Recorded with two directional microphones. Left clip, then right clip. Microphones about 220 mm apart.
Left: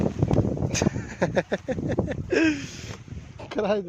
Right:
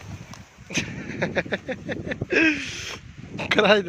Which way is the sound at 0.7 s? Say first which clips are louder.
Left 1 dB; 30° left (ahead or behind).